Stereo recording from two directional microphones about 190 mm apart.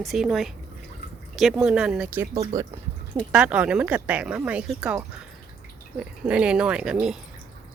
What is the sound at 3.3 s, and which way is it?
Speech, 5° right (ahead or behind).